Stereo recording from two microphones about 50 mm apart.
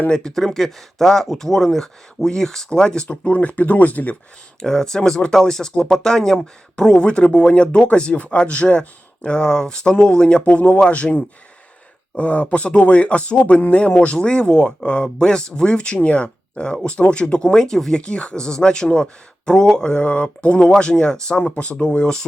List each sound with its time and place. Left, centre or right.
0.1 s speech: centre
0.3 s speech: centre; by 4.2 s left
4.6 s speech: centre
21.3 s speech: left